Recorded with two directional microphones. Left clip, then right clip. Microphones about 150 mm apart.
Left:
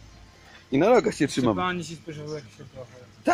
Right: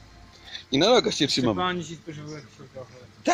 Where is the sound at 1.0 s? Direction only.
20° left (ahead or behind).